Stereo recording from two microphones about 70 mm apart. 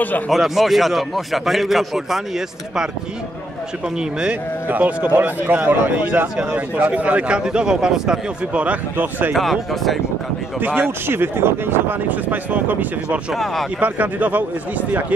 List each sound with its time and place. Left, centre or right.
0.3 s a man's voice: centre
4.2 s a man's voice: right
8.9 s speech: right
9.3 s a man's voice: centre
10.6 s speech: right
13.3 s a man's voice: centre
13.7 s speech: right